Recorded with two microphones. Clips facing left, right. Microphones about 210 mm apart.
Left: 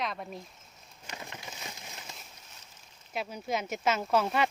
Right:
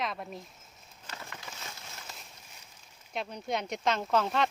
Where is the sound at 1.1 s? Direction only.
15° left (ahead or behind).